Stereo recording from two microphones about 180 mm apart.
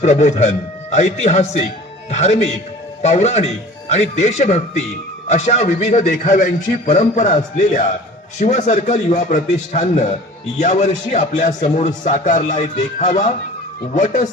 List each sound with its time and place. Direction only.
0.0 s a man's voice: 40° left (ahead or behind)